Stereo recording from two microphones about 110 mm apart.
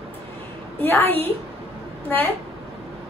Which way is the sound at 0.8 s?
20° left (ahead or behind).